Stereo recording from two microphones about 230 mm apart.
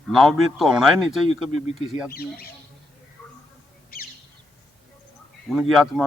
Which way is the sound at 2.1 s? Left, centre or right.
Left.